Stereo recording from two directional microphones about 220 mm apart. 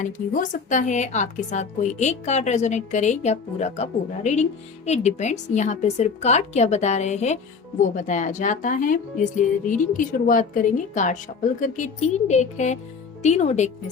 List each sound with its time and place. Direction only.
0.0 s a woman's voice: 35° left (ahead or behind)